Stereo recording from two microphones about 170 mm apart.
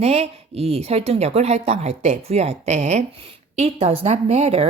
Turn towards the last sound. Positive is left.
turn(degrees=-35)  # may be behind; listen again after turning